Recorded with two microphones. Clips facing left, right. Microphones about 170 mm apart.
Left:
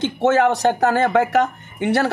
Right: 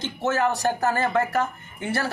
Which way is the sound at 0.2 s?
85° left.